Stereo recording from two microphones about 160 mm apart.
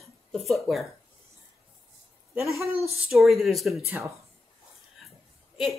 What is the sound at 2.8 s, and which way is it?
A woman's voice, centre (ahead or behind).